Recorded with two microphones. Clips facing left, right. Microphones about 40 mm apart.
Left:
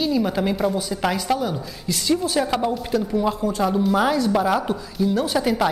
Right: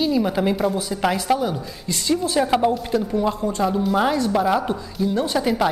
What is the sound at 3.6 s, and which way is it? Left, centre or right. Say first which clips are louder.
A woman's voice: even; centre.